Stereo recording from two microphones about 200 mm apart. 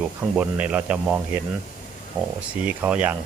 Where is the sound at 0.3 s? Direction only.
5° right (ahead or behind).